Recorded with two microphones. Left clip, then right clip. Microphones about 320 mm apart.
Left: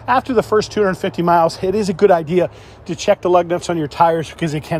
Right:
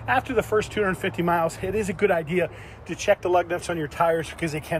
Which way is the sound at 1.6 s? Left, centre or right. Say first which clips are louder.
Left 9 dB; left.